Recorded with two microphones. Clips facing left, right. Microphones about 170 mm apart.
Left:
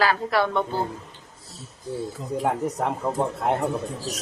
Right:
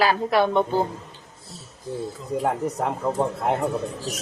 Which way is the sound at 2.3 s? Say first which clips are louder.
Right 1 dB; centre (ahead or behind).